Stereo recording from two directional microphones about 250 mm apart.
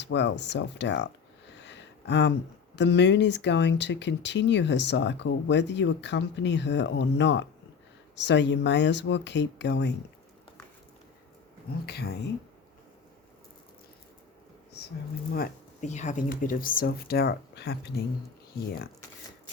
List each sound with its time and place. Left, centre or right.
0.0 s speech: left
1.5 s a sound: left
2.7 s speech: left
11.9 s speech: left
15.3 s speech: left